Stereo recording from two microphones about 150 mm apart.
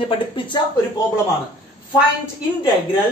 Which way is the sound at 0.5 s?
30° left (ahead or behind).